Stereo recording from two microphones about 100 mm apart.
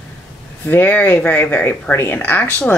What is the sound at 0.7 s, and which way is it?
Speech, 15° left (ahead or behind).